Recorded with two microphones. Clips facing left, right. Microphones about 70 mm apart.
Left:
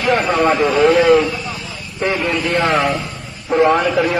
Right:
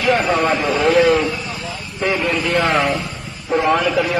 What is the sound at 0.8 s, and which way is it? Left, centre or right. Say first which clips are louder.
Speech: left 2 dB; left.